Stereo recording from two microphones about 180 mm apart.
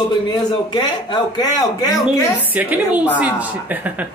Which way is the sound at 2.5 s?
10° right (ahead or behind).